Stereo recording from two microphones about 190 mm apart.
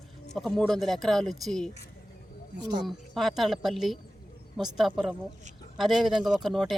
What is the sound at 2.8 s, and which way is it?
A woman's voice, centre (ahead or behind).